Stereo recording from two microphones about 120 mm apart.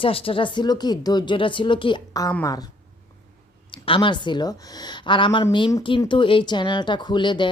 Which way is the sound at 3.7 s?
45° left (ahead or behind).